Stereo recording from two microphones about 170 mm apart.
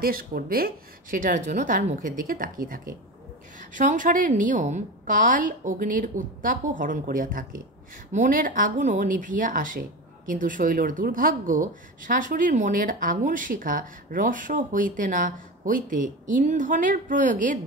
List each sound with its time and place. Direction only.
0.0 s speech: 60° right (ahead or behind)